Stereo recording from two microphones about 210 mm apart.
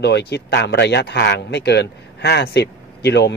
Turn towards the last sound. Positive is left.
turn(degrees=55)  # may be behind; listen again after turning